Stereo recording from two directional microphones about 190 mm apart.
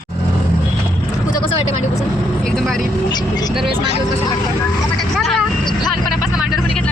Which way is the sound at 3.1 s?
20° left (ahead or behind).